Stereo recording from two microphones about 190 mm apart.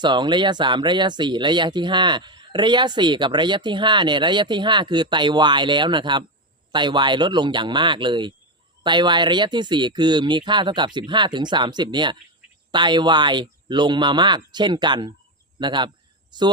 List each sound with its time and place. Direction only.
0.0 s a man's voice: 25° right (ahead or behind)